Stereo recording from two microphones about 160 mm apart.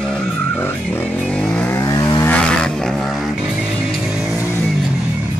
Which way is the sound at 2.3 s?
5° left (ahead or behind).